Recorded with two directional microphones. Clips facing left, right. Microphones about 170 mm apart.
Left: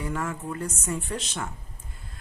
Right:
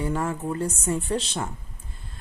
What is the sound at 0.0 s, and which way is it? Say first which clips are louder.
Speech: right 4 dB; 30° right (ahead or behind).